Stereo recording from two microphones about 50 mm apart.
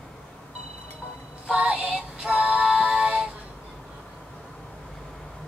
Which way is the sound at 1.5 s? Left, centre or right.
Right.